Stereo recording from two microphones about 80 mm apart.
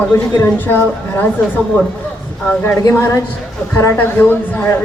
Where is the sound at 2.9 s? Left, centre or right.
Left.